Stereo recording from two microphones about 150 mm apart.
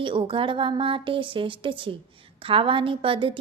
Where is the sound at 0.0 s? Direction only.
35° right (ahead or behind).